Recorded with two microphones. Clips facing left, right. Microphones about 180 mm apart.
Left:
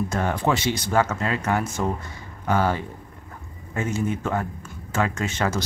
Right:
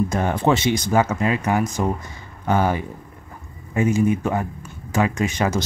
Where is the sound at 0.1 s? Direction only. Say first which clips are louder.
Right 4 dB; 20° right (ahead or behind).